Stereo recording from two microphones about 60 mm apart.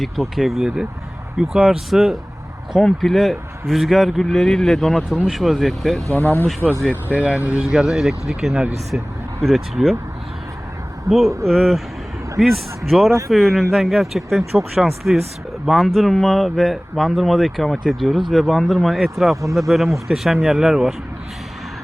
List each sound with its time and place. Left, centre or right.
0.0 s speech: centre
6.1 s speech: left
6.6 s speech: right
7.6 s speech: centre
9.4 s speech: centre
11.1 s speech: right
11.4 s speech: centre
13.1 s speech: right
13.3 s speech: centre